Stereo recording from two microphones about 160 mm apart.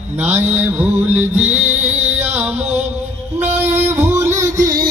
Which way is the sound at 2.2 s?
10° right (ahead or behind).